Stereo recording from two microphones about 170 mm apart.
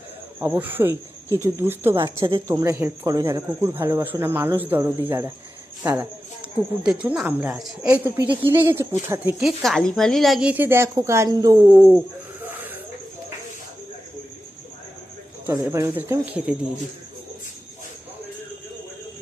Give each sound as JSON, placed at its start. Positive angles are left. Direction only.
{"t": 0.3, "sound": "speech", "side_deg": -10}
{"t": 9.4, "sound": "speech", "side_deg": 0}
{"t": 15.4, "sound": "speech", "side_deg": -15}